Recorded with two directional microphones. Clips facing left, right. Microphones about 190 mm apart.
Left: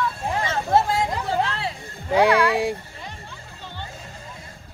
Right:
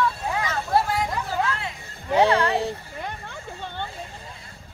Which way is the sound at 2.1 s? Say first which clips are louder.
Left 2 dB; 10° left (ahead or behind).